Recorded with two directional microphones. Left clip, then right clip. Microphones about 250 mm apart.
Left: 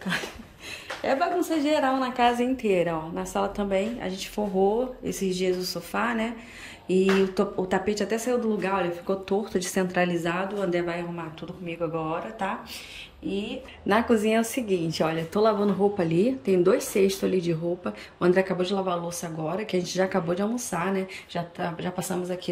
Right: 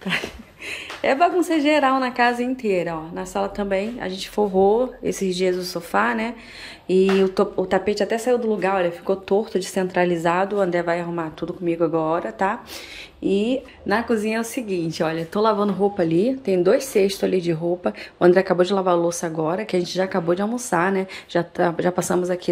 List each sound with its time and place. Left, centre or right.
0.1 s a sound: centre
0.7 s speech: centre
13.8 s speech: centre